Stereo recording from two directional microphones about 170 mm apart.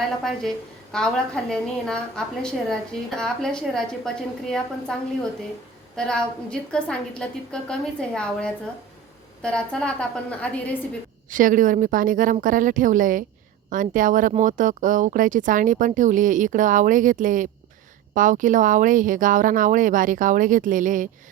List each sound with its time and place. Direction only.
0.9 s a woman's voice: 5° left (ahead or behind)
6.0 s a woman's voice: 5° left (ahead or behind)
11.3 s speech: 50° right (ahead or behind)